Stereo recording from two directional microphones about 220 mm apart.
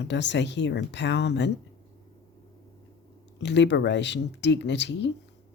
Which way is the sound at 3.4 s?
50° left (ahead or behind).